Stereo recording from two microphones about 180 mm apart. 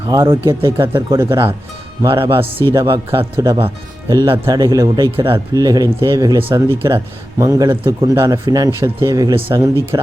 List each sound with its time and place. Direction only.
0.1 s speech: 15° right (ahead or behind)
1.3 s speech: 25° right (ahead or behind)